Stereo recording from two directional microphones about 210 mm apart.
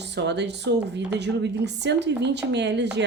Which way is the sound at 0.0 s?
55° right (ahead or behind).